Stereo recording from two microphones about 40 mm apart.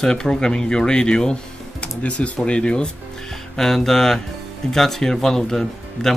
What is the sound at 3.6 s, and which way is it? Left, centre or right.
Speech, centre.